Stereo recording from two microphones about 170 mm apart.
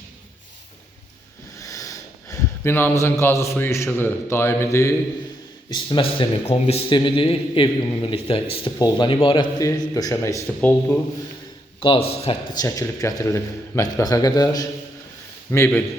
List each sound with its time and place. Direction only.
1.5 s speech: 20° left (ahead or behind)
5.7 s a man's voice: 30° left (ahead or behind)
11.8 s speech: 35° left (ahead or behind)
12.5 s a man's voice: 20° left (ahead or behind)